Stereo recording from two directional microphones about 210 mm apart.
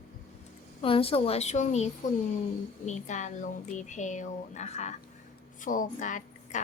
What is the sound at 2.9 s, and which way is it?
A woman's voice, 35° left (ahead or behind).